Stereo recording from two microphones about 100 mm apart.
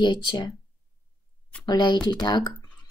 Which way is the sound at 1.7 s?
45° left (ahead or behind).